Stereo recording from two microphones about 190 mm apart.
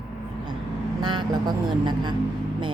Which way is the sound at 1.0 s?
25° right (ahead or behind).